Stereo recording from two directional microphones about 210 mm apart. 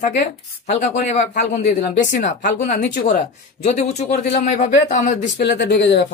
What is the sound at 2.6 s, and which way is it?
Speech, 35° left (ahead or behind).